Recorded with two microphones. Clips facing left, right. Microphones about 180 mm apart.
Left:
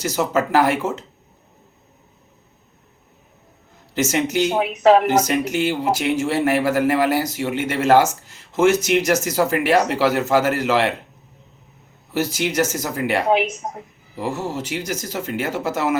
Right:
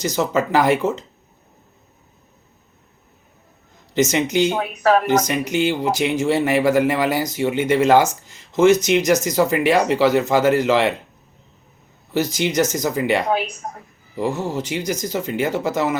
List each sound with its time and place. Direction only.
0.0 s speech: 5° left (ahead or behind)
3.9 s a man's voice: 5° left (ahead or behind)
4.6 s speech: 20° left (ahead or behind)
5.0 s a man's voice: 5° left (ahead or behind)
12.1 s speech: 5° left (ahead or behind)
13.2 s speech: 20° left (ahead or behind)
14.2 s a man's voice: 5° left (ahead or behind)